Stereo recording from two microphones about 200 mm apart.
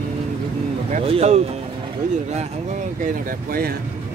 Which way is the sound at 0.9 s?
35° right (ahead or behind).